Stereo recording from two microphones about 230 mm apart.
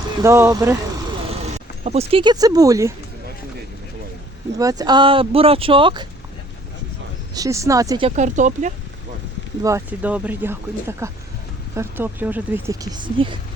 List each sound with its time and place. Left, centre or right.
0.2 s speech: centre
1.8 s speech: right
4.5 s speech: centre
7.3 s speech: centre; by 8.7 s right
9.6 s speech: centre